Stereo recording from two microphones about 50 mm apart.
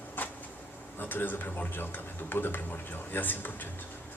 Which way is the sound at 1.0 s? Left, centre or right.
Left.